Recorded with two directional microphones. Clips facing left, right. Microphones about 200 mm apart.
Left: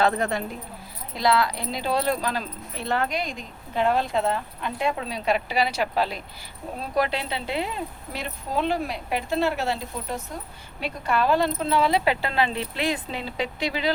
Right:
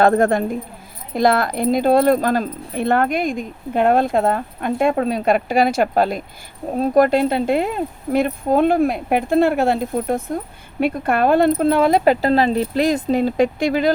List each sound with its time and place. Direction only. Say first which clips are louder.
0.0 s speech: right 9 dB; 50° right (ahead or behind)